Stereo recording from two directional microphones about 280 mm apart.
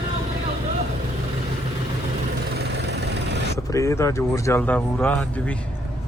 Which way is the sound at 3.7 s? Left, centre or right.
Centre.